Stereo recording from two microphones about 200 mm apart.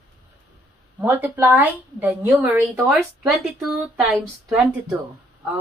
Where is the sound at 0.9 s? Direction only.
10° right (ahead or behind).